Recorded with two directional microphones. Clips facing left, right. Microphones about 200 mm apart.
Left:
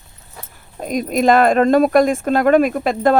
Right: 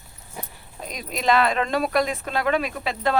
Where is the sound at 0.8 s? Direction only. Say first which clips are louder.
Left 9 dB; 50° left (ahead or behind).